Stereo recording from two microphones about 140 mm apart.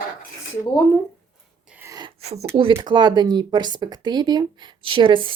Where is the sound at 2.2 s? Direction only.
50° right (ahead or behind).